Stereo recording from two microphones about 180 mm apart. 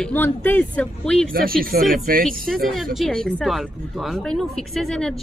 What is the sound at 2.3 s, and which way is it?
Speech, centre (ahead or behind).